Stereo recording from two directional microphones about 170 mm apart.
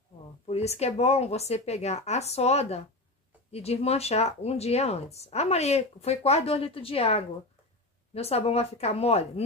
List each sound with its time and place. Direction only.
0.5 s speech: 40° left (ahead or behind)